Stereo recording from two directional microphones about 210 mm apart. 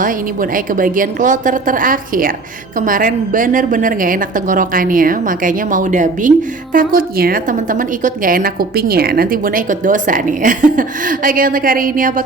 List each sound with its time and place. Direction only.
0.0 s a woman's voice: 40° right (ahead or behind)